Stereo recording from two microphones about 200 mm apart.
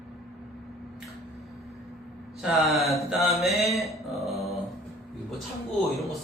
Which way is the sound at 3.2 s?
Centre (ahead or behind).